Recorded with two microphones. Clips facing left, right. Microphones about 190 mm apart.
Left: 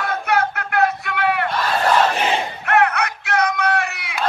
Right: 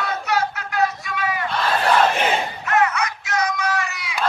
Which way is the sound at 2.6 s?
60° left (ahead or behind).